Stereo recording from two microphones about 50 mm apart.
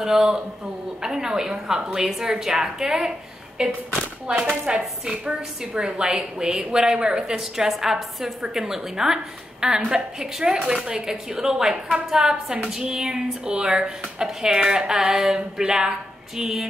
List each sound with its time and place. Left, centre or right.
0.0 s a woman's voice: centre